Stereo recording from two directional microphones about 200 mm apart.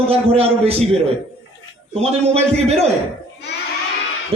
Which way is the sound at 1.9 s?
30° right (ahead or behind).